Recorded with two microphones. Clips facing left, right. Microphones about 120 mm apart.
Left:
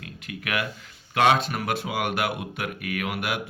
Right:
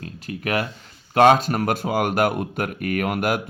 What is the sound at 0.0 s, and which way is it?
Speech, 35° right (ahead or behind).